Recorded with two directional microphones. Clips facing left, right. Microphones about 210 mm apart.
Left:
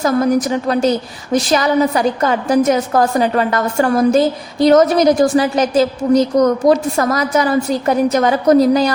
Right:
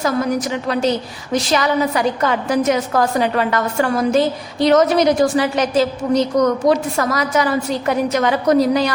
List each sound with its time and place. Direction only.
0.0 s a woman's voice: 40° left (ahead or behind)